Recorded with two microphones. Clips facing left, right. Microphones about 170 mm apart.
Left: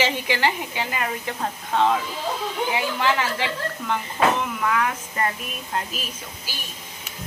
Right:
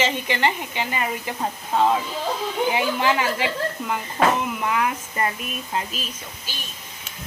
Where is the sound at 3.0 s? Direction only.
20° right (ahead or behind).